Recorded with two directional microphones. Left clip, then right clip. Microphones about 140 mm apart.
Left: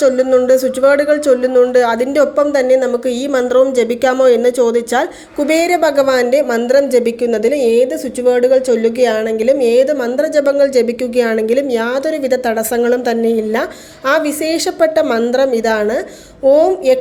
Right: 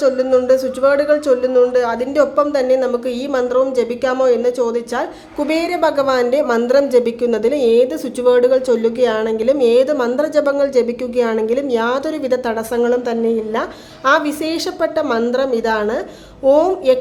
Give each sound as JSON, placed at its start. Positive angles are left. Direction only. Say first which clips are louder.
{"t": 0.0, "sound": "a woman's voice", "louder": "left 3 dB", "side_deg": 30}
{"t": 6.7, "sound": "a woman's voice", "louder": "left 2 dB", "side_deg": 10}